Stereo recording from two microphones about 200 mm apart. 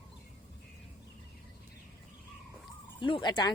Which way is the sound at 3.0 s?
25° left (ahead or behind).